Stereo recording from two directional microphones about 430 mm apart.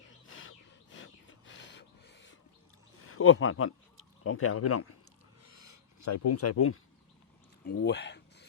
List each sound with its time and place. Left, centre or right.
0.3 s rub: left
3.1 s speech: left
5.4 s rub: left
7.7 s a sound: left